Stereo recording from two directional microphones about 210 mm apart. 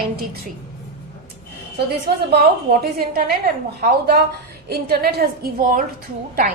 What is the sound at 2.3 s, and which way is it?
A woman's voice, 45° right (ahead or behind).